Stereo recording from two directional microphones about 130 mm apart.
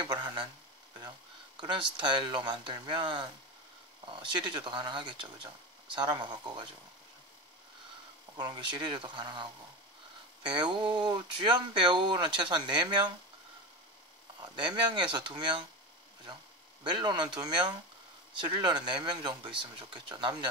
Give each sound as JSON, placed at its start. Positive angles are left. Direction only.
{"t": 0.0, "sound": "a sound", "side_deg": -35}
{"t": 1.6, "sound": "speech", "side_deg": -35}
{"t": 8.4, "sound": "speech", "side_deg": -35}
{"t": 14.4, "sound": "speech", "side_deg": -35}
{"t": 16.8, "sound": "speech", "side_deg": -35}